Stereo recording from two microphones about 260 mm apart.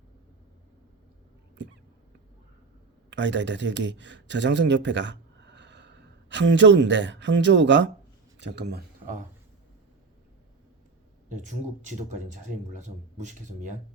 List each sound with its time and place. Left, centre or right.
3.2 s speech: right
8.6 s a sound: right
11.4 s speech: right